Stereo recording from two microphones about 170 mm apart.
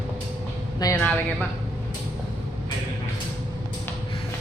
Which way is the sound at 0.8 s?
20° left (ahead or behind).